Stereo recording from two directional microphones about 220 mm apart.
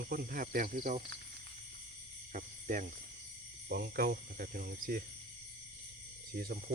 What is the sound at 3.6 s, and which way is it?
Cricket, 45° right (ahead or behind).